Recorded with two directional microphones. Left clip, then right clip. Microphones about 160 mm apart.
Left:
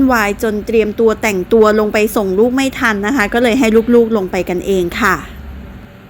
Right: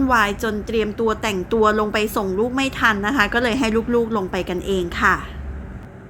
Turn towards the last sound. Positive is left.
turn(degrees=45)  # may be behind; listen again after turning